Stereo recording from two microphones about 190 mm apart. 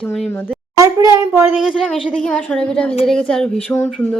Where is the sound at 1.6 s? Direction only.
Centre (ahead or behind).